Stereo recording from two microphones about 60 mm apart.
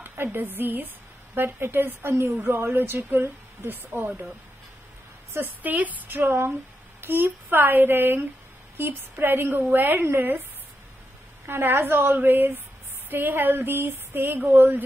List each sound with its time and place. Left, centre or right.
0.0 s a woman's voice: right
5.3 s a woman's voice: right
11.4 s a woman's voice: right